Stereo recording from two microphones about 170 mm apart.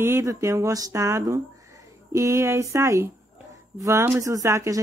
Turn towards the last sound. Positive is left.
turn(degrees=-15)  # may be behind; listen again after turning